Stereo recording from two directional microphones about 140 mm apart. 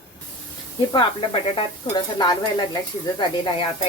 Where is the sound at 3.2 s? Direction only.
35° left (ahead or behind).